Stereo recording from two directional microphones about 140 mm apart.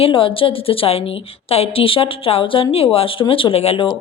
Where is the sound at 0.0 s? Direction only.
40° left (ahead or behind).